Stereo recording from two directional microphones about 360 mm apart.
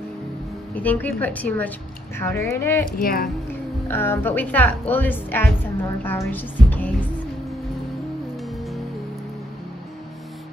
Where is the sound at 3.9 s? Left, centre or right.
Centre.